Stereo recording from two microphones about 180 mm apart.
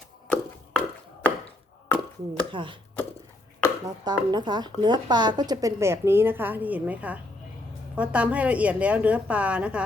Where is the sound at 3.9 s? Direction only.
25° right (ahead or behind).